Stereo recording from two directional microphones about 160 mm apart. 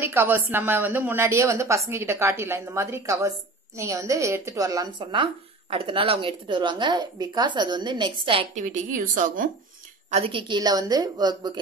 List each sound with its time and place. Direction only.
0.0 s a woman's voice: 15° right (ahead or behind); by 8.5 s 30° right (ahead or behind)
8.5 s speech: 50° right (ahead or behind)
10.1 s a woman's voice: 35° right (ahead or behind)